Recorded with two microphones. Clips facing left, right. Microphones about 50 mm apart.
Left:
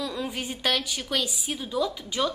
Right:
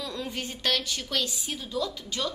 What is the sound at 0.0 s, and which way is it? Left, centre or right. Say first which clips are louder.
A woman's voice: left 3 dB; centre.